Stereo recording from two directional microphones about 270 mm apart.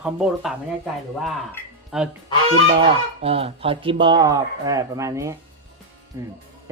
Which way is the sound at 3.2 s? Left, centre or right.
Right.